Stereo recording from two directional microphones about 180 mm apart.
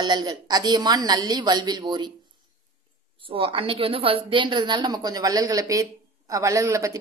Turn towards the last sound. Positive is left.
turn(degrees=-15)  # may be behind; listen again after turning